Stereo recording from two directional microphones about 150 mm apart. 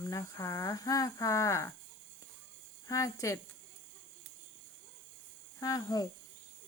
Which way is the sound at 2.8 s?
20° left (ahead or behind).